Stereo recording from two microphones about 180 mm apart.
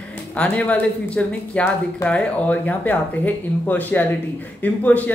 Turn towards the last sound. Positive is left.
turn(degrees=10)  # may be behind; listen again after turning